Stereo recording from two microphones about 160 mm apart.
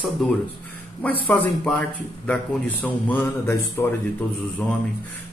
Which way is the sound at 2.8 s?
15° left (ahead or behind).